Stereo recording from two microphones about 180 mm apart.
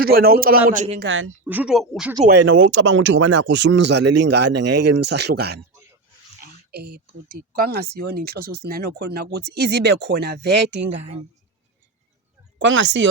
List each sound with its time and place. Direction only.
0.0 s a woman's voice: 55° right (ahead or behind)
1.0 s speech: 90° right
1.5 s speech: 5° right (ahead or behind)
2.2 s speech: 85° right; by 5.5 s 65° right (ahead or behind)
6.4 s a sound: 60° right (ahead or behind)
7.3 s speech: 55° right (ahead or behind); by 10.8 s 70° right (ahead or behind)
12.5 s speech: 90° right